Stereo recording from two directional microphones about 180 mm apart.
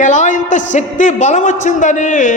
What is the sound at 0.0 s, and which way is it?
A man's voice, 45° left (ahead or behind).